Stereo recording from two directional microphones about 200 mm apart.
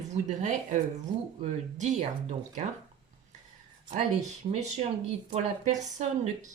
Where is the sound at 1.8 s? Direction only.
35° right (ahead or behind).